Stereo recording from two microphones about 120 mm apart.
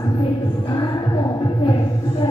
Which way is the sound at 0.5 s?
40° left (ahead or behind).